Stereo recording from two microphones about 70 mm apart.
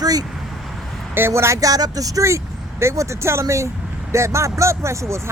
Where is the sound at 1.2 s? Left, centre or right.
Right.